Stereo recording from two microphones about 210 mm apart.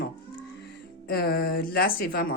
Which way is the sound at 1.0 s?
45° left (ahead or behind).